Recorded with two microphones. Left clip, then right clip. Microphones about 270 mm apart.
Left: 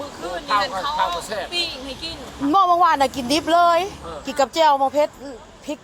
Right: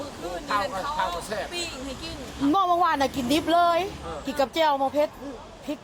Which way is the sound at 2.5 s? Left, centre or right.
Left.